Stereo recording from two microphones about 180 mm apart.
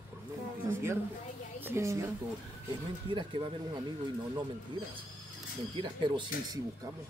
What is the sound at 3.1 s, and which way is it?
Speech, 30° right (ahead or behind).